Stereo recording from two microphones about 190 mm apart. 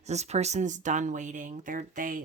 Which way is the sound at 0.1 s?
35° right (ahead or behind).